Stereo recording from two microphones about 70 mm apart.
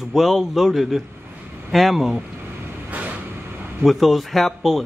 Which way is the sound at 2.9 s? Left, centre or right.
Right.